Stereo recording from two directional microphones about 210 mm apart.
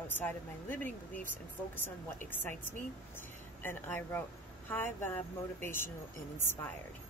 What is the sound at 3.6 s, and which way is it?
Speech, 10° left (ahead or behind).